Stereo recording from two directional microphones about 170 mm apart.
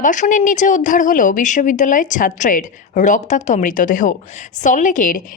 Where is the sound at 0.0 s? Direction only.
50° left (ahead or behind).